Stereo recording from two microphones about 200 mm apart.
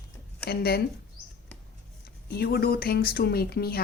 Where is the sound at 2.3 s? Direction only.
50° left (ahead or behind).